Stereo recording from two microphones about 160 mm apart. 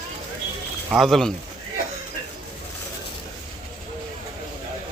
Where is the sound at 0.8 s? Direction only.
Centre (ahead or behind).